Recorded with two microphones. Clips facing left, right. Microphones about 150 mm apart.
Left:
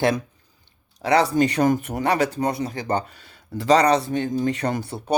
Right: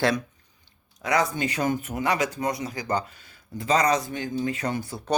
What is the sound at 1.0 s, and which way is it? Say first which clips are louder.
Speech: left 6 dB; 30° left (ahead or behind).